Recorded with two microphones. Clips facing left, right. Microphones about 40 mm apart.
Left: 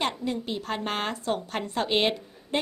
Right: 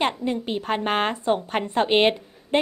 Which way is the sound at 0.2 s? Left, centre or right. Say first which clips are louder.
Right 4 dB; right.